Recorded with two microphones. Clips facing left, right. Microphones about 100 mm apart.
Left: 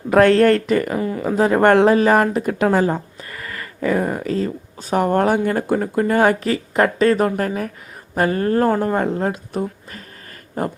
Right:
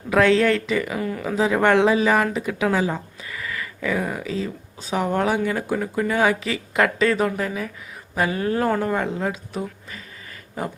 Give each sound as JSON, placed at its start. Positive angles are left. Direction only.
{"t": 0.1, "sound": "speech", "side_deg": 50}
{"t": 0.9, "sound": "speech", "side_deg": 25}
{"t": 1.4, "sound": "speech", "side_deg": 45}